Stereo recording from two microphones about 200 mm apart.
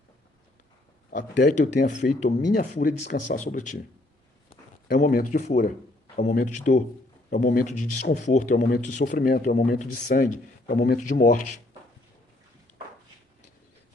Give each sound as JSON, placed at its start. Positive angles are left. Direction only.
{"t": 1.4, "sound": "speech", "side_deg": 40}
{"t": 4.9, "sound": "speech", "side_deg": 45}